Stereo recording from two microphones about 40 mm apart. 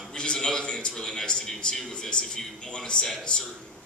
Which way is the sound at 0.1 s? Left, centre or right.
Centre.